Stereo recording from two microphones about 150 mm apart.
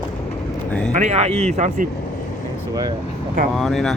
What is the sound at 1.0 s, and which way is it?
Speech, 50° right (ahead or behind).